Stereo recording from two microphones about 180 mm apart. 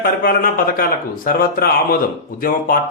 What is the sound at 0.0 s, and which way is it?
A man's voice, 50° left (ahead or behind).